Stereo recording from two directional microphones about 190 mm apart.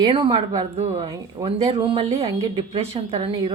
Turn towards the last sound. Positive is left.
turn(degrees=-30)  # may be behind; listen again after turning